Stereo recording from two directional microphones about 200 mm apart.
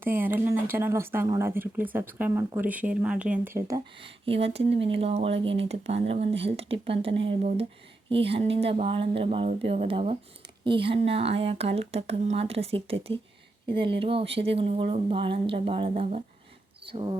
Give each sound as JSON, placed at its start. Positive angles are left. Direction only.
{"t": 0.0, "sound": "speech", "side_deg": -10}
{"t": 4.4, "sound": "speech", "side_deg": -30}